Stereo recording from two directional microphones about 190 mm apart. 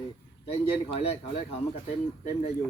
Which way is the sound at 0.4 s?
30° left (ahead or behind).